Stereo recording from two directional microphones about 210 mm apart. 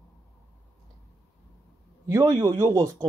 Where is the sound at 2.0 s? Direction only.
15° right (ahead or behind).